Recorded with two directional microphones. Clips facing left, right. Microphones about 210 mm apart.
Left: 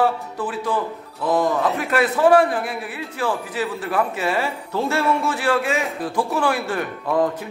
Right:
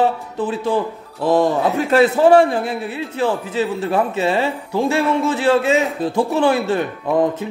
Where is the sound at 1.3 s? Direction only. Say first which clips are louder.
Right 4 dB; centre (ahead or behind).